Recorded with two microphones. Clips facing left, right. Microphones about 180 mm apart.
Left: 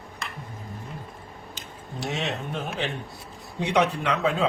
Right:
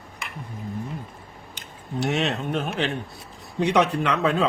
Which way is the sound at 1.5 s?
65° right (ahead or behind).